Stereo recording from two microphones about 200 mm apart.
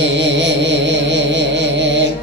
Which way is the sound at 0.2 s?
60° right (ahead or behind).